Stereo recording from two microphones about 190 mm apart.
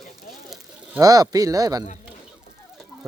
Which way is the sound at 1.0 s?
20° right (ahead or behind).